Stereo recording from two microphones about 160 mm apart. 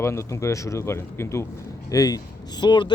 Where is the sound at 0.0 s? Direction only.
15° left (ahead or behind).